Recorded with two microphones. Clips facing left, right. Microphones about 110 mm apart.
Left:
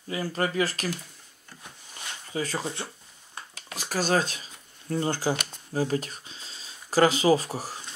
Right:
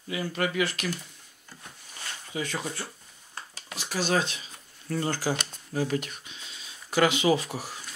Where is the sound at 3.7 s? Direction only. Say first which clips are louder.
Left 2 dB; 40° left (ahead or behind).